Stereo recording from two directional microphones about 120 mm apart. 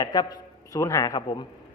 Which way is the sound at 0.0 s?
35° left (ahead or behind).